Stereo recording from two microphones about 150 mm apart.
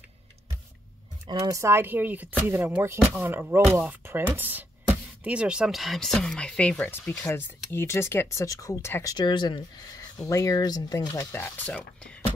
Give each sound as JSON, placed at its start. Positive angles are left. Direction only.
{"t": 1.2, "sound": "speech", "side_deg": -20}
{"t": 11.3, "sound": "speech", "side_deg": 10}